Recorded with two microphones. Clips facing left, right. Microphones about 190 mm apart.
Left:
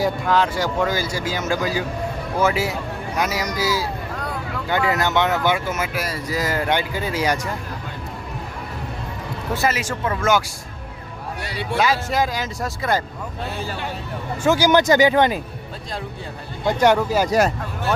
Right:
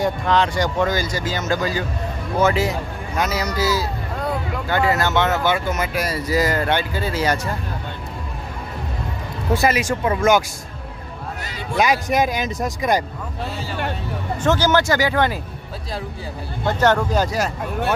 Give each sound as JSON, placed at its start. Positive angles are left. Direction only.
{"t": 0.0, "sound": "speech", "side_deg": 5}
{"t": 6.6, "sound": "speech", "side_deg": 15}
{"t": 9.6, "sound": "speech", "side_deg": -15}
{"t": 11.8, "sound": "speech", "side_deg": -15}
{"t": 14.4, "sound": "speech", "side_deg": 10}
{"t": 16.6, "sound": "speech", "side_deg": 10}